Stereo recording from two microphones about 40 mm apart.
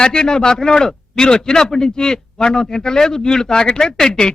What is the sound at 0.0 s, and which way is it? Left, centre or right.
A man's voice, centre.